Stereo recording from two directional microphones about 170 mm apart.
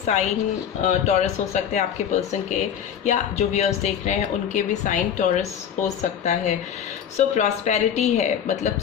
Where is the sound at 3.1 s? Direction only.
40° left (ahead or behind).